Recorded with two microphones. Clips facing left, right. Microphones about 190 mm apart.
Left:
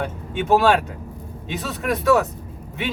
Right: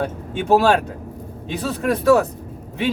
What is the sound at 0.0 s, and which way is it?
Speech, 35° right (ahead or behind).